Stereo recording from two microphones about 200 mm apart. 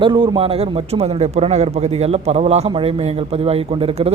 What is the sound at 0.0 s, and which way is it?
A man's voice, 25° right (ahead or behind).